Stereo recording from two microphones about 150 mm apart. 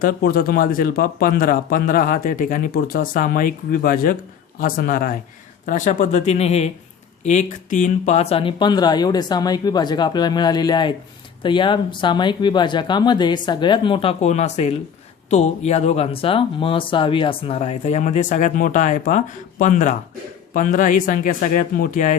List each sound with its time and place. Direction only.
0.0 s speech: 80° left
5.6 s speech: 55° left (ahead or behind)